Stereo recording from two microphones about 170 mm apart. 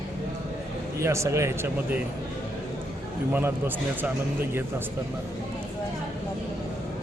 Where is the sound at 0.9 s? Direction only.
15° right (ahead or behind).